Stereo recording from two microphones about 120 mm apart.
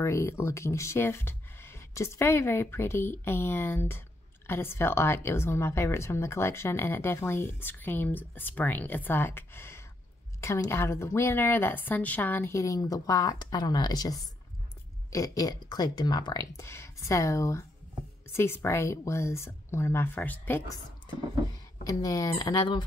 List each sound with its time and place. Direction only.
0.0 s speech: 25° left (ahead or behind)
16.5 s speech: 20° left (ahead or behind)
21.8 s speech: 30° left (ahead or behind)